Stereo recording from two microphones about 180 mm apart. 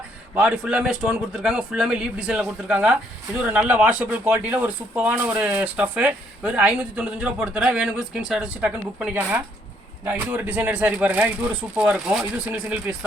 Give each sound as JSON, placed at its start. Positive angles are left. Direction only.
{"t": 0.3, "sound": "a man's voice", "side_deg": -5}